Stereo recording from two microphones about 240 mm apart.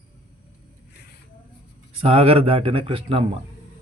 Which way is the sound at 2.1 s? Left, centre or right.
Right.